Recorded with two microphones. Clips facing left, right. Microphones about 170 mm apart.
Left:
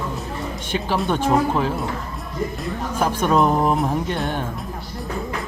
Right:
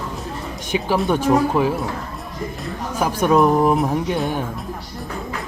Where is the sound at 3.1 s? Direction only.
10° right (ahead or behind).